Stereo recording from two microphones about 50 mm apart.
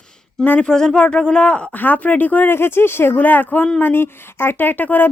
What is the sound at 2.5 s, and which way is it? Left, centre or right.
Speech, left.